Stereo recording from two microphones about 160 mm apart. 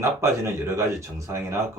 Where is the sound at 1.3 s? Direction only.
15° right (ahead or behind).